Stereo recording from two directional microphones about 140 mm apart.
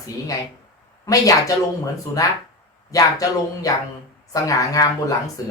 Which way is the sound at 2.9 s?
25° left (ahead or behind).